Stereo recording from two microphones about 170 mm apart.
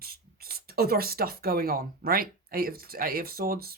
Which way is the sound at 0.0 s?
60° right (ahead or behind).